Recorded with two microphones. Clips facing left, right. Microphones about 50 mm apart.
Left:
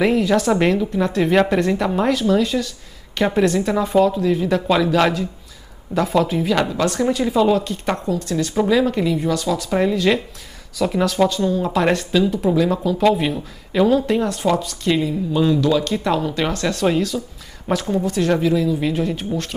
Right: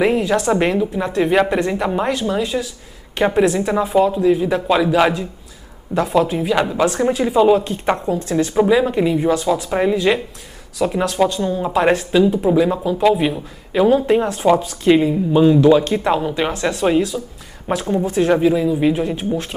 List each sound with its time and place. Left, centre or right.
0.0 s a woman's voice: centre
12.9 s speech: centre
13.8 s a woman's voice: right